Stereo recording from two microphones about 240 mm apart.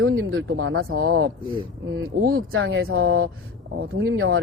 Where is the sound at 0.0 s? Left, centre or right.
Right.